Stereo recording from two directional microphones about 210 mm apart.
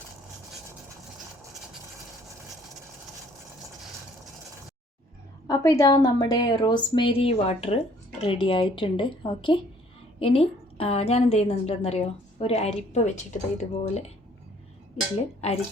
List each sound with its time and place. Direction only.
5.5 s a woman's voice: 15° left (ahead or behind); by 14.1 s 35° left (ahead or behind)